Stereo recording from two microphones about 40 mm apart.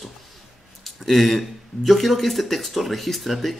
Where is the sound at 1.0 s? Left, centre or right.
Centre.